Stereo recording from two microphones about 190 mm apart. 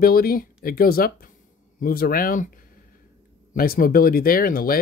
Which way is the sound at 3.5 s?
50° left (ahead or behind).